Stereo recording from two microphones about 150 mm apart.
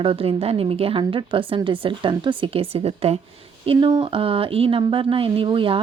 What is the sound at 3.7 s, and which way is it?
Speech, 30° right (ahead or behind).